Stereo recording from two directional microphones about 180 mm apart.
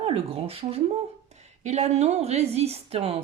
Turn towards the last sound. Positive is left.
turn(degrees=-35)  # may be behind; listen again after turning